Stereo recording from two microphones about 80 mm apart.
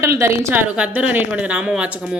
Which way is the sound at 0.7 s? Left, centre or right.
Centre.